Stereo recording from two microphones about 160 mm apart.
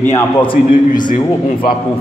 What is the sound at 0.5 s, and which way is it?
Speech, 60° left (ahead or behind).